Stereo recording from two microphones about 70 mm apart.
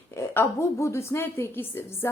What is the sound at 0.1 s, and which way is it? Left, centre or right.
A woman's voice, left.